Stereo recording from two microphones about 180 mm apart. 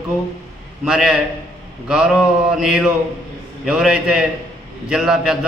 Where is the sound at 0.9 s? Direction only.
5° right (ahead or behind).